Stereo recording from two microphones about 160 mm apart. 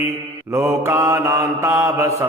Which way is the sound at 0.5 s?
15° right (ahead or behind).